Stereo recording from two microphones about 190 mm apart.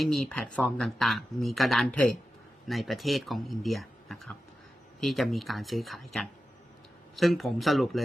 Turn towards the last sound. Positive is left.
turn(degrees=0)  # may be behind; listen again after turning